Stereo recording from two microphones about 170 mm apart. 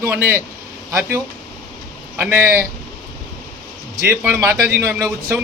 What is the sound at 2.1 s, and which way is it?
Speech, 10° right (ahead or behind).